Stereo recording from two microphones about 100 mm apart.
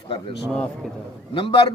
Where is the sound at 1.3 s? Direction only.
60° left (ahead or behind).